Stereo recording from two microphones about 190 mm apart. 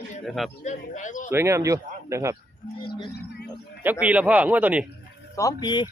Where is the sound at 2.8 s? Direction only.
25° left (ahead or behind).